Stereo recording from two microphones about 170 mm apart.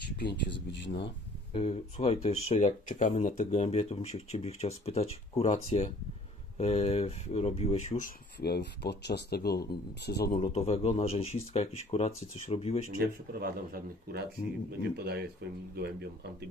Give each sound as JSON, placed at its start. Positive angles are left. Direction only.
{"t": 0.7, "sound": "speech", "side_deg": 90}
{"t": 1.5, "sound": "speech", "side_deg": 35}
{"t": 8.4, "sound": "speech", "side_deg": 75}
{"t": 10.4, "sound": "speech", "side_deg": 40}
{"t": 12.9, "sound": "speech", "side_deg": -55}
{"t": 14.8, "sound": "speech", "side_deg": -75}